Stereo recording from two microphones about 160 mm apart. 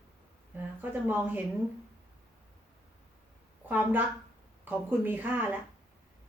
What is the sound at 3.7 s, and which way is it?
Speech, 10° right (ahead or behind).